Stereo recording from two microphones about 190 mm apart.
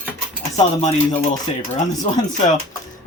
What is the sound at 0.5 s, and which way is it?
Dishes, 35° left (ahead or behind).